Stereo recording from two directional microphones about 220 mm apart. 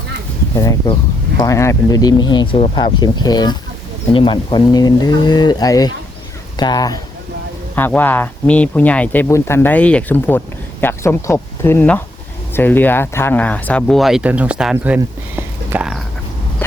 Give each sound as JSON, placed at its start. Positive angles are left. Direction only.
{"t": 0.5, "sound": "speech", "side_deg": 15}